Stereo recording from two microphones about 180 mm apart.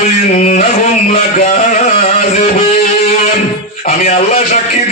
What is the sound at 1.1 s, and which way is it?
Music, 45° left (ahead or behind).